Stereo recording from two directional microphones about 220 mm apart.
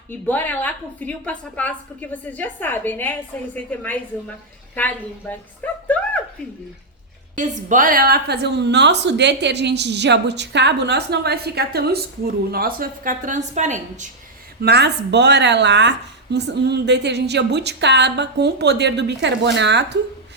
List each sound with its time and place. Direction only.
0.1 s a woman's voice: 10° left (ahead or behind)
7.3 s a woman's voice: 35° right (ahead or behind)
14.6 s a woman's voice: 50° right (ahead or behind)